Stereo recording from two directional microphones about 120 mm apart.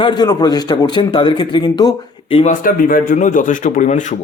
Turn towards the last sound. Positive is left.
turn(degrees=90)